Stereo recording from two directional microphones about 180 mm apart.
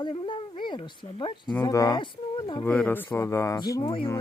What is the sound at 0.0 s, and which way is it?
Speech, 30° left (ahead or behind).